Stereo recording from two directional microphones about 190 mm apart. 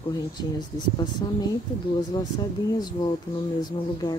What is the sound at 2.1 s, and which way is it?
Speech, 20° left (ahead or behind).